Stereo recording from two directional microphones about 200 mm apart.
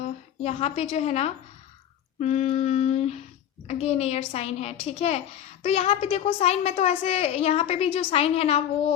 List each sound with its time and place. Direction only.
0.4 s a woman's voice: 30° left (ahead or behind)